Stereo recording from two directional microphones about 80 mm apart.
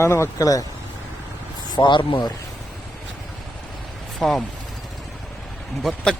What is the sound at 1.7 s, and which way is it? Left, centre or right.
Speech, left.